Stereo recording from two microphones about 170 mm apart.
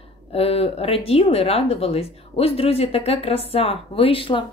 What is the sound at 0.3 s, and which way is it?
Speech, 35° left (ahead or behind).